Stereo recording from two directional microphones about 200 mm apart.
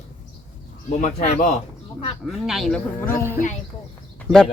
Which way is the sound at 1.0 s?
40° left (ahead or behind).